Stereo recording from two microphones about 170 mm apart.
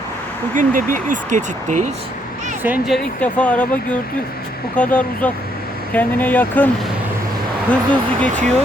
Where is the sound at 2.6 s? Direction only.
10° right (ahead or behind).